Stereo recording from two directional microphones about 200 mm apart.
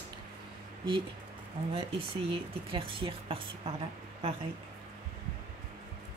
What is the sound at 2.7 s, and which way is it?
Speech, 25° right (ahead or behind).